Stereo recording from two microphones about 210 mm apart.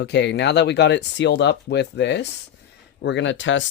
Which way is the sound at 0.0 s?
55° left (ahead or behind).